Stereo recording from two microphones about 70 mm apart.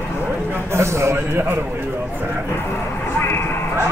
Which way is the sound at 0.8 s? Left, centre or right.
Right.